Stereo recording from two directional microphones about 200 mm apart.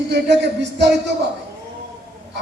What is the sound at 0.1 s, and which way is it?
Speech, 60° right (ahead or behind).